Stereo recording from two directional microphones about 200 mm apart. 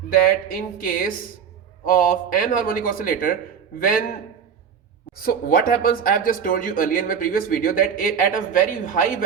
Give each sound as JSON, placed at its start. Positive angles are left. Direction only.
{"t": 0.1, "sound": "speech", "side_deg": 45}
{"t": 5.1, "sound": "speech", "side_deg": 45}